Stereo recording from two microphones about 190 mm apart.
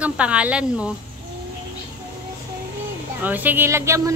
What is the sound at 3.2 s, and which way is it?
Speech, 10° right (ahead or behind).